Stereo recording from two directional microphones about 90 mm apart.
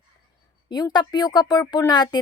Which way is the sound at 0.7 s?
50° left (ahead or behind).